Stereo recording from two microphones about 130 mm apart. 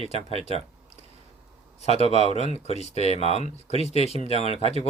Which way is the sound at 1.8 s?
55° left (ahead or behind).